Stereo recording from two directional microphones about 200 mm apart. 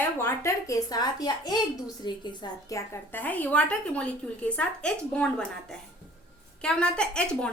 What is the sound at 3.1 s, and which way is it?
A woman's voice, 10° left (ahead or behind).